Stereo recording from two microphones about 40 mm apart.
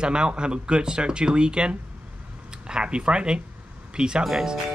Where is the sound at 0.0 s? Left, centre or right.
Right.